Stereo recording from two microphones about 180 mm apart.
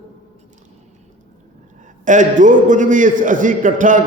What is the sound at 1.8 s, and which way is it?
A man's voice, 45° right (ahead or behind).